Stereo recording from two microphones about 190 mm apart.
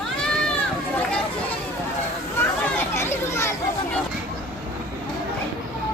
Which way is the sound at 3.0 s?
15° left (ahead or behind).